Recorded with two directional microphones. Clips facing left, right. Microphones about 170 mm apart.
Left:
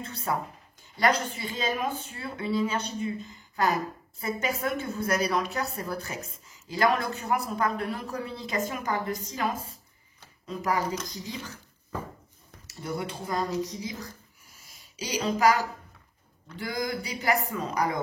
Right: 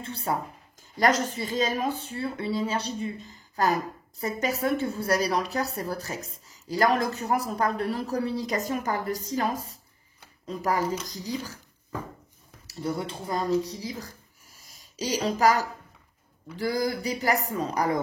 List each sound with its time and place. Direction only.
0.0 s speech: 30° right (ahead or behind)
0.9 s a woman's voice: 40° right (ahead or behind)
12.6 s a woman's voice: 30° right (ahead or behind)
13.8 s a sound: 40° right (ahead or behind)
16.5 s a woman's voice: 40° right (ahead or behind)